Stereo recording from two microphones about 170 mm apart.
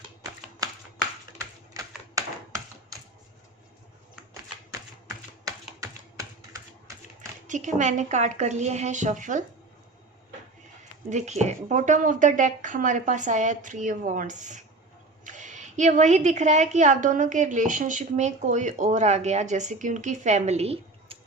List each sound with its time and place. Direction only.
4.7 s typing: 20° right (ahead or behind)
7.4 s a woman's voice: 45° right (ahead or behind)
11.1 s a woman's voice: 40° right (ahead or behind)